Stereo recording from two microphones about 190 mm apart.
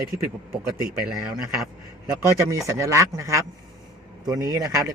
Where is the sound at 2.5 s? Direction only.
15° right (ahead or behind).